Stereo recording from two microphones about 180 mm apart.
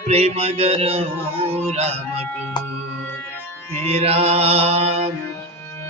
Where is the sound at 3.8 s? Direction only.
35° right (ahead or behind).